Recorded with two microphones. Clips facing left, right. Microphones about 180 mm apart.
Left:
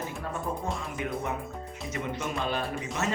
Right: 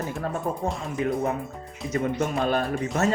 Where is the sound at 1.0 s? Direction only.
35° right (ahead or behind).